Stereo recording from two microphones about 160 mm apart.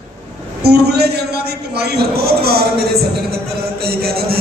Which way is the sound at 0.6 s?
90° right.